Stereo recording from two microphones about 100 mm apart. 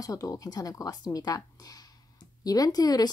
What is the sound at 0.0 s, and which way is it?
Speech, 35° left (ahead or behind).